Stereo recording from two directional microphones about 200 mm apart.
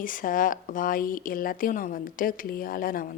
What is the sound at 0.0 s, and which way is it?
Speech, 45° left (ahead or behind).